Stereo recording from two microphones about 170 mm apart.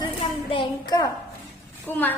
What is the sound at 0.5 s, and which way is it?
Speech, 25° left (ahead or behind).